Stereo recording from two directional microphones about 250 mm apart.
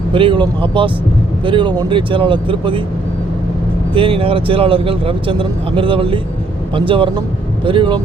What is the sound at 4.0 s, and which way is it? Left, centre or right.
A man's voice, right.